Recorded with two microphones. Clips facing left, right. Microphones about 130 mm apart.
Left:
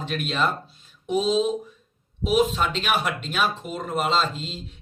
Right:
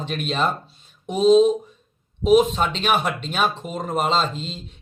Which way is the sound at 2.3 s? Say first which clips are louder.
Right 5 dB; 35° right (ahead or behind).